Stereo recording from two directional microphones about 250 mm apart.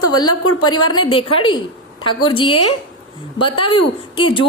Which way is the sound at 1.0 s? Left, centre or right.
Left.